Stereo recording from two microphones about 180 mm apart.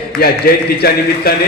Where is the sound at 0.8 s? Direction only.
60° left (ahead or behind).